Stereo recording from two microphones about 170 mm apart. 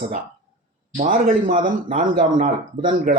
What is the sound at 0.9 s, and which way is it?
Speech, 45° right (ahead or behind).